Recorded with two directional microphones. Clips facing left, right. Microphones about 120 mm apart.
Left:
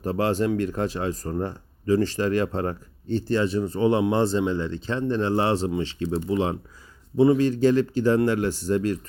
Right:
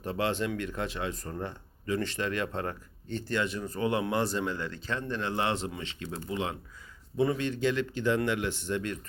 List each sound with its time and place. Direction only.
0.0 s speech: 40° left (ahead or behind)